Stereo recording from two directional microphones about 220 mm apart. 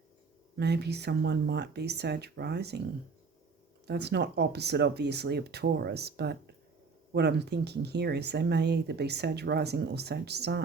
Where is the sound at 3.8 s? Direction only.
50° right (ahead or behind).